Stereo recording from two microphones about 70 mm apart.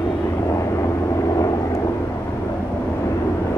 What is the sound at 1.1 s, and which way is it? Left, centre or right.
Vehicle, left.